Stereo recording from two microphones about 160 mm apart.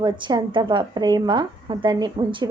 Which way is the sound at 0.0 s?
25° right (ahead or behind).